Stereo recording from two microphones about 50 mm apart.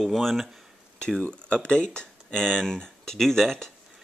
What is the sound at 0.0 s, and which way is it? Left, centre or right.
Speech, centre.